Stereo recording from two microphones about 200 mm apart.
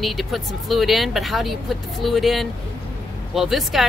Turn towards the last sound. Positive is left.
turn(degrees=0)  # may be behind; listen again after turning